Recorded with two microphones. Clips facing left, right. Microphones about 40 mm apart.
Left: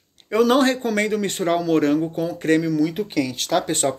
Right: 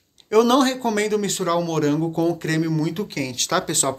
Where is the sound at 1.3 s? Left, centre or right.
Left.